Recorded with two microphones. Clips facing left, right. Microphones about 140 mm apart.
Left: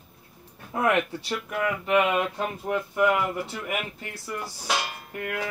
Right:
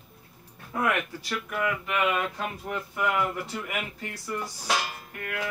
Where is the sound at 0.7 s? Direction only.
30° left (ahead or behind).